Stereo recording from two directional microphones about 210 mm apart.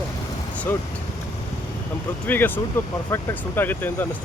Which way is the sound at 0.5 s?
5° left (ahead or behind).